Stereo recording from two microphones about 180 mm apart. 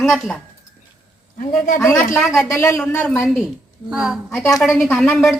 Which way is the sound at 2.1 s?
Centre (ahead or behind).